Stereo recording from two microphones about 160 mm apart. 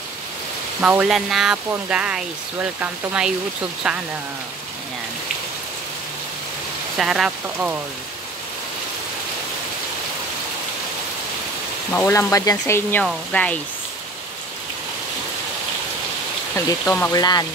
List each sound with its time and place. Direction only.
0.7 s speech: 5° right (ahead or behind)
7.0 s speech: 5° right (ahead or behind)
11.9 s speech: 15° left (ahead or behind)
16.5 s speech: 20° left (ahead or behind)